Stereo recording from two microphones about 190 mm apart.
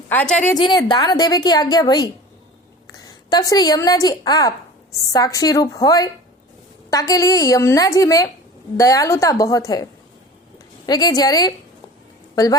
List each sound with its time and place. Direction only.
0.1 s a woman's voice: 10° left (ahead or behind)
0.5 s a woman's voice: 20° left (ahead or behind)